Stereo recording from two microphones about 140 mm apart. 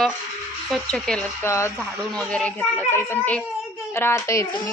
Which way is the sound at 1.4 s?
20° left (ahead or behind).